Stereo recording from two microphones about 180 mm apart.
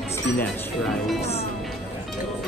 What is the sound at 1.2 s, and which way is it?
Music, 35° left (ahead or behind).